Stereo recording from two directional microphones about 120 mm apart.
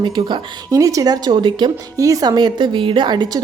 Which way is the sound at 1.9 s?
30° right (ahead or behind).